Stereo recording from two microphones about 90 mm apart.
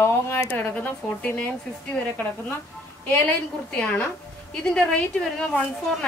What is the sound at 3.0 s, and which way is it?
Speech, 20° left (ahead or behind).